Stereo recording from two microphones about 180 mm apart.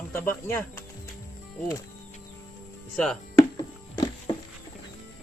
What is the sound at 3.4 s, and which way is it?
Music, 20° left (ahead or behind).